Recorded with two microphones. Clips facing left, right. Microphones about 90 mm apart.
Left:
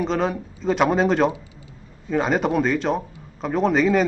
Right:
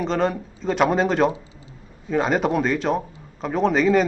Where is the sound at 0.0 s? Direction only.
Centre (ahead or behind).